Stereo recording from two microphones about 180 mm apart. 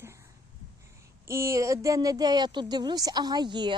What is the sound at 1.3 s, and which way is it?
Speech, 15° right (ahead or behind).